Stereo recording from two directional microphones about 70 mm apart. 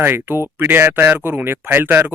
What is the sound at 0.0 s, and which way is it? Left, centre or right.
Speech, right.